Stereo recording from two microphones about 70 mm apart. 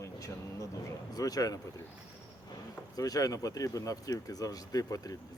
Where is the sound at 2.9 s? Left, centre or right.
Left.